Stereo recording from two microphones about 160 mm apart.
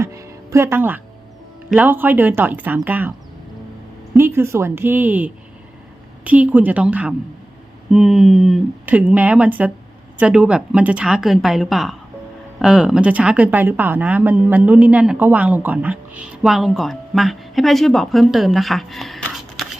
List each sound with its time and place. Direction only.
0.0 s music: 20° right (ahead or behind)
1.7 s speech: 10° right (ahead or behind)
4.2 s speech: 15° right (ahead or behind); by 19.6 s centre (ahead or behind)